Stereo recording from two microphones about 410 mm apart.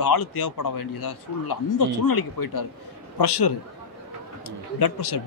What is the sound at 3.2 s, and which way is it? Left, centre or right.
Speech, left.